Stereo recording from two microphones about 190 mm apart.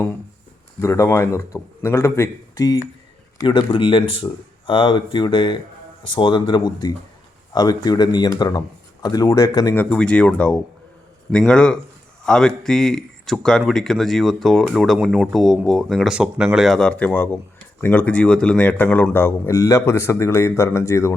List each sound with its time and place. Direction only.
0.8 s speech: 15° left (ahead or behind)
9.9 s speech: 5° left (ahead or behind)